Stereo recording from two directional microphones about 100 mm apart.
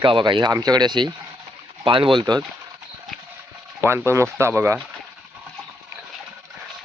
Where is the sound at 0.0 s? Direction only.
55° right (ahead or behind).